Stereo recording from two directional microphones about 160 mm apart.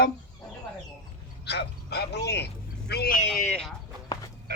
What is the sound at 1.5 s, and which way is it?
Bow-wow, 90° left.